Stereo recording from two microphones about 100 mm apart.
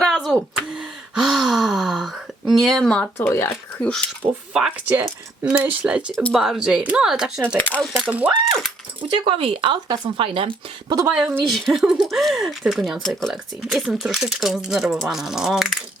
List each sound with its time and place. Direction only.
0.0 s a sound: 5° left (ahead or behind)
0.7 s speech: 5° right (ahead or behind)
3.2 s speech: 25° left (ahead or behind)
3.5 s speech: 10° left (ahead or behind)
4.5 s speech: 10° right (ahead or behind)
7.5 s speech: 15° left (ahead or behind)
8.0 s speech: 15° right (ahead or behind)
9.0 s speech: 60° right (ahead or behind)
11.1 s speech: 10° right (ahead or behind)